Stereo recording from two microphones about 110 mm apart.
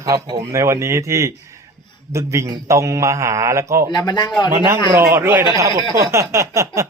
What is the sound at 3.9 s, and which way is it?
Speech, 40° left (ahead or behind).